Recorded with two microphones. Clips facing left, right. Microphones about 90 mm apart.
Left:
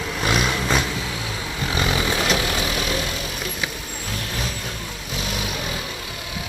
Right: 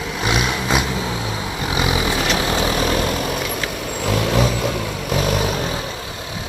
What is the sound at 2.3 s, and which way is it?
Vehicle, 30° right (ahead or behind).